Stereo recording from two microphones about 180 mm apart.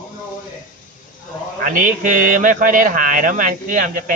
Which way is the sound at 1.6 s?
50° right (ahead or behind).